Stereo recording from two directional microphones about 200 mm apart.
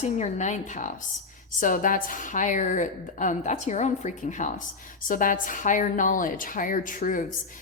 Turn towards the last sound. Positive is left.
turn(degrees=40)  # may be behind; listen again after turning